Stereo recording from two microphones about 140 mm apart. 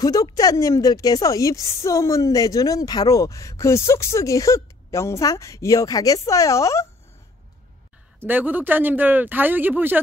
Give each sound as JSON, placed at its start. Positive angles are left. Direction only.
{"t": 0.0, "sound": "a woman's voice", "side_deg": 25}
{"t": 8.3, "sound": "speech", "side_deg": -15}